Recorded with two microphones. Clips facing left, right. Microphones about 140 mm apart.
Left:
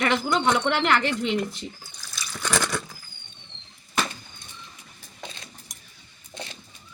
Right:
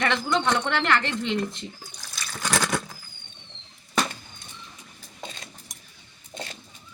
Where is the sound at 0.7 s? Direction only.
10° left (ahead or behind).